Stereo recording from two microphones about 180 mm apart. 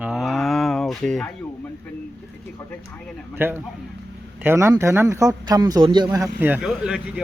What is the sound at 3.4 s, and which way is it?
A man's voice, 10° right (ahead or behind).